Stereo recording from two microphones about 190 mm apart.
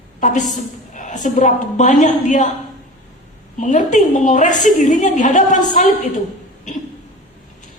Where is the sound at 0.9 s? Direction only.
40° left (ahead or behind).